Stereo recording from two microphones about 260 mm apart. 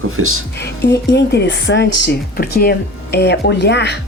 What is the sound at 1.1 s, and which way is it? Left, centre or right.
Speech, left.